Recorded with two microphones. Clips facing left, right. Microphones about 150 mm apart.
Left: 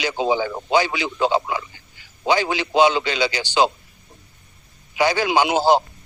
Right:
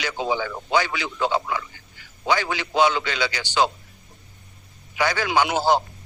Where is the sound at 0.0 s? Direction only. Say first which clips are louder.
Left 4 dB; 20° left (ahead or behind).